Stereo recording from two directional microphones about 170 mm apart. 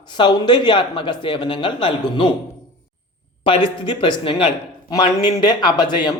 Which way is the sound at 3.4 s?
30° left (ahead or behind).